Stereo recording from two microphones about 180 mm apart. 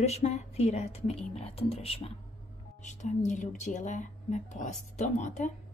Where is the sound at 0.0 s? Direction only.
35° left (ahead or behind).